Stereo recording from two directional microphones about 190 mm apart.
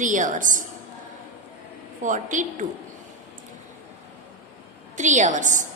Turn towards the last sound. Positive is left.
turn(degrees=-40)  # may be behind; listen again after turning